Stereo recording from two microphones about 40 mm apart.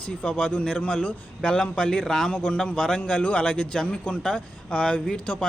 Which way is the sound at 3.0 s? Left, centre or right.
Left.